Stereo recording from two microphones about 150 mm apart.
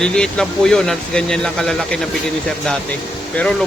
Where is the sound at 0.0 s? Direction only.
5° left (ahead or behind).